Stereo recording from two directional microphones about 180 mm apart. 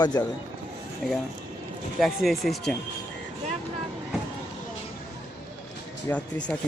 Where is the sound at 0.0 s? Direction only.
20° left (ahead or behind).